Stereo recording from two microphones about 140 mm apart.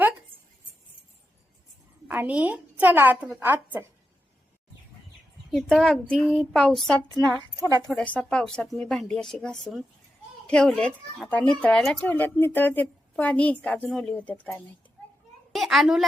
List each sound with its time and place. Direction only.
2.0 s a woman's voice: 10° right (ahead or behind)
5.5 s speech: 5° left (ahead or behind)
7.6 s a woman's voice: 20° right (ahead or behind)
7.9 s a woman's voice: 5° left (ahead or behind)
15.5 s speech: centre (ahead or behind)